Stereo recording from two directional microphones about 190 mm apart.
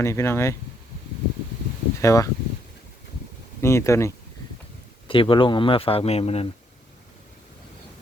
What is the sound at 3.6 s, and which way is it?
Speech, 15° left (ahead or behind).